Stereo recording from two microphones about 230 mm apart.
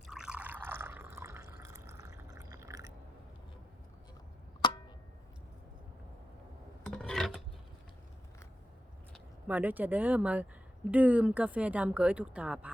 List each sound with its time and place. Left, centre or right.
0.1 s water: centre
4.6 s a sound: centre
6.8 s filing: centre
9.1 s a woman's voice: centre